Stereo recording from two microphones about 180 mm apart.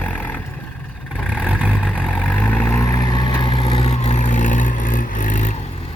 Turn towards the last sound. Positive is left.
turn(degrees=45)  # may be behind; listen again after turning